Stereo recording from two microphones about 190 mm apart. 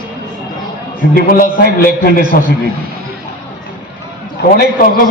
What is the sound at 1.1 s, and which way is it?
A man's voice, 50° left (ahead or behind).